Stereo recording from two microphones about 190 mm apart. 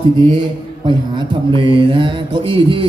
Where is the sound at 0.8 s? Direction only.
25° right (ahead or behind).